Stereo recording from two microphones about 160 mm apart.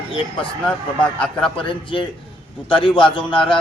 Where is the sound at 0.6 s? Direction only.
10° left (ahead or behind).